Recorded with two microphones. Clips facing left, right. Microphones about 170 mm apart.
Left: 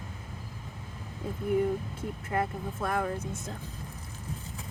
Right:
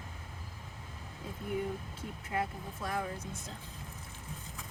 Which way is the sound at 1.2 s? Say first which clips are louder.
Left 9 dB; 55° left (ahead or behind).